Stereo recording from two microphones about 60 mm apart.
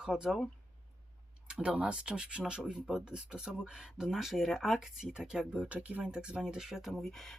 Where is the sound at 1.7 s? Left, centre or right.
Centre.